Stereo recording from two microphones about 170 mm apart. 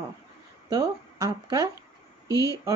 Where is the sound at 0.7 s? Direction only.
20° right (ahead or behind).